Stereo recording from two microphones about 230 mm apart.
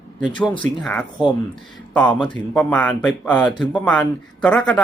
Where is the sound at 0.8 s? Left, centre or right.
Centre.